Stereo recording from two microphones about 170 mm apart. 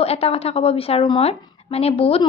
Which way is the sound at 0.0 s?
35° left (ahead or behind).